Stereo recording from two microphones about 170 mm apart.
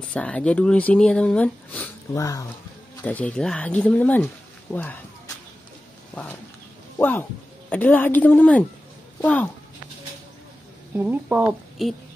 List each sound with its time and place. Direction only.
0.1 s speech: 5° left (ahead or behind)
2.1 s speech: 20° left (ahead or behind)
7.0 s speech: 10° left (ahead or behind)
11.0 s a woman's voice: 10° right (ahead or behind)